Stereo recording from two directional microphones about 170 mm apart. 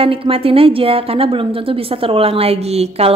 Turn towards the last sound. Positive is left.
turn(degrees=-35)  # may be behind; listen again after turning